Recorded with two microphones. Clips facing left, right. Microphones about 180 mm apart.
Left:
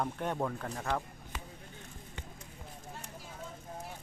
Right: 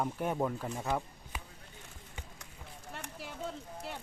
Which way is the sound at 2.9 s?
75° right (ahead or behind).